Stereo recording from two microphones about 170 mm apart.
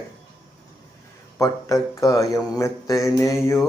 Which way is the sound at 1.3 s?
20° left (ahead or behind).